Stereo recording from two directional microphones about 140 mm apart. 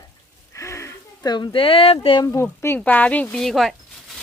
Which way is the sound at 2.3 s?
15° left (ahead or behind).